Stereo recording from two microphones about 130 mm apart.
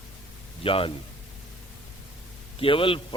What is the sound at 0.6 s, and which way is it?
Speech, 45° left (ahead or behind).